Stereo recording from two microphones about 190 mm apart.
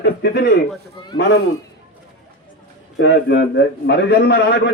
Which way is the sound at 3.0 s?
65° left (ahead or behind).